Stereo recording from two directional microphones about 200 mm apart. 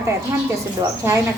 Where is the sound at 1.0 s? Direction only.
10° right (ahead or behind).